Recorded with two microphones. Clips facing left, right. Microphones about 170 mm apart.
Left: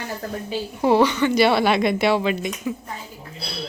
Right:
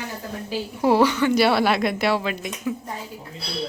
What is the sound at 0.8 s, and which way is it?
Speech, 5° right (ahead or behind).